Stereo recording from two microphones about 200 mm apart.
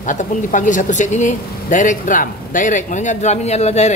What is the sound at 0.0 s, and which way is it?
Speech, 40° left (ahead or behind).